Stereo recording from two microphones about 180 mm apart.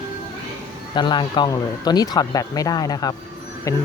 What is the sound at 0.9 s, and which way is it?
Speech, 25° left (ahead or behind).